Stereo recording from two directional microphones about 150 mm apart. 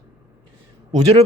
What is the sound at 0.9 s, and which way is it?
Speech, 45° right (ahead or behind).